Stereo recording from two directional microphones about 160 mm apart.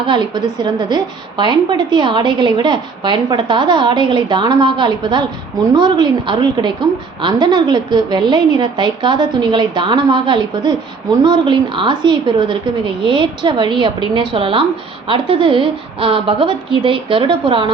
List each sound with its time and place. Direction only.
0.0 s a woman's voice: 30° right (ahead or behind)